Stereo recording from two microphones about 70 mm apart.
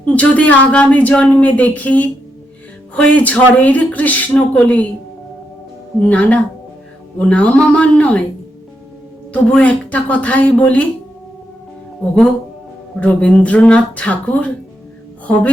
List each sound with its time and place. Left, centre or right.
0.0 s speech: left
6.0 s speech: left
9.5 s speech: centre
13.0 s speech: centre